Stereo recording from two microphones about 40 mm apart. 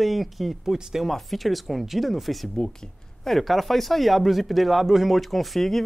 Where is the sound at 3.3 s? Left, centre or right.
Centre.